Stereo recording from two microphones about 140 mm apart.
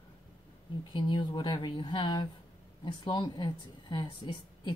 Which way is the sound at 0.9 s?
35° left (ahead or behind).